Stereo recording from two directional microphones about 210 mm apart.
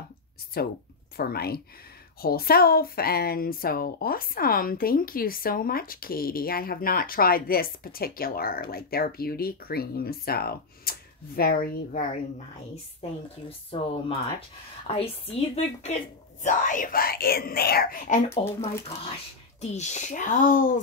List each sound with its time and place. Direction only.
0.6 s speech: 45° left (ahead or behind)
13.7 s a woman's voice: 25° left (ahead or behind)
19.6 s speech: 30° left (ahead or behind)